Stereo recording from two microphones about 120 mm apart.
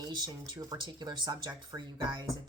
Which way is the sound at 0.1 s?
35° right (ahead or behind).